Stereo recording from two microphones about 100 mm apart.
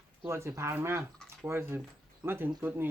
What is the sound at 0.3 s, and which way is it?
Speech, 25° right (ahead or behind).